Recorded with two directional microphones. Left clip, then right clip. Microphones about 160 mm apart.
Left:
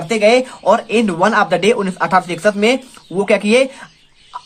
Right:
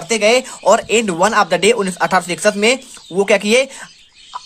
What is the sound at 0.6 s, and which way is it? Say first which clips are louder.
Speech: right 3 dB; 40° right (ahead or behind).